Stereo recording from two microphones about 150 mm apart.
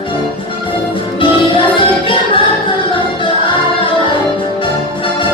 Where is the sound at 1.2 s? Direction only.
35° left (ahead or behind).